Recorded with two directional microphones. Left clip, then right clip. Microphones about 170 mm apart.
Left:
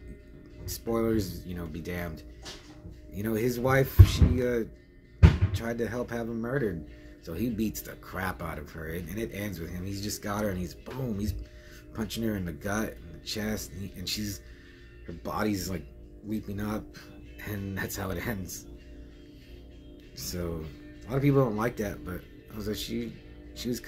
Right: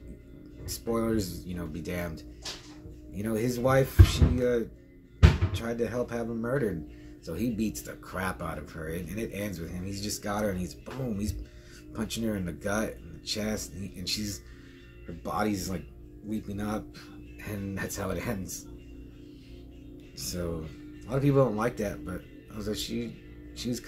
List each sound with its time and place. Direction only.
0.7 s speech: 5° right (ahead or behind)
20.2 s speech: centre (ahead or behind)